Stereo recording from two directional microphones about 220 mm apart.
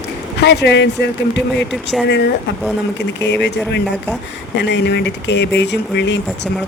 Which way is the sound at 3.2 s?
50° left (ahead or behind).